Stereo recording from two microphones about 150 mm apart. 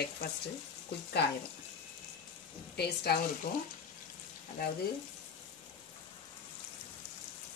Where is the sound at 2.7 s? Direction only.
90° left.